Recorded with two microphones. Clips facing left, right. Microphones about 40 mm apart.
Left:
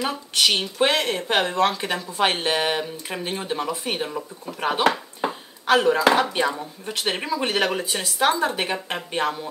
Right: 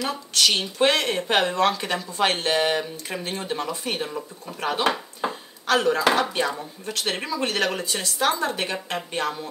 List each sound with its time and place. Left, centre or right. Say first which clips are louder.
0.0 s speech: left 1 dB; left
0.8 s speech: right 1 dB; centre
5.2 s dishes: left 3 dB; centre
6.1 s speech: left 2 dB; centre